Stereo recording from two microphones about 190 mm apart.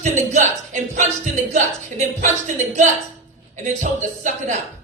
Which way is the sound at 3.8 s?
40° right (ahead or behind).